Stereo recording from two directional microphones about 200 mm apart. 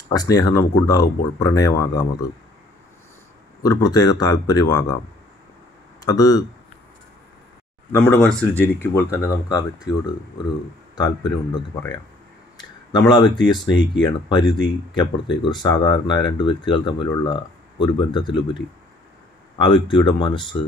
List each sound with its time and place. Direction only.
0.1 s speech: 20° left (ahead or behind)
3.6 s speech: 20° left (ahead or behind)
6.0 s speech: 20° left (ahead or behind)
7.9 s speech: 10° left (ahead or behind)
11.0 s speech: 20° left (ahead or behind)
13.7 s speech: 65° left (ahead or behind)
14.0 s speech: 25° left (ahead or behind)
19.6 s speech: 25° left (ahead or behind)